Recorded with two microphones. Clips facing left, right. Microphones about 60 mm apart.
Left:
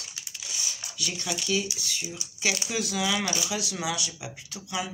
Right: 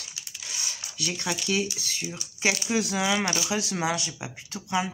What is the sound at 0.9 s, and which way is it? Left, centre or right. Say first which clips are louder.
Speech: right 3 dB; right.